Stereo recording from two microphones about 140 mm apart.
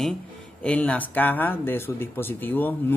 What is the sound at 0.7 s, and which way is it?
Speech, 10° left (ahead or behind).